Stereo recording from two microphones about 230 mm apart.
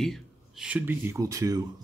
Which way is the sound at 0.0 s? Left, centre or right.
Centre.